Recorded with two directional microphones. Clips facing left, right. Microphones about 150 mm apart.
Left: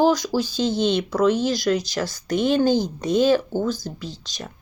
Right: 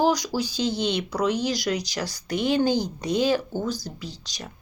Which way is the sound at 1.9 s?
45° left (ahead or behind).